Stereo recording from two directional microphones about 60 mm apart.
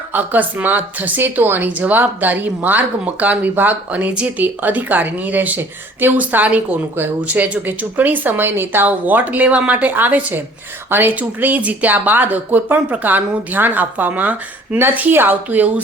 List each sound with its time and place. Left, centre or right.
0.1 s speech: right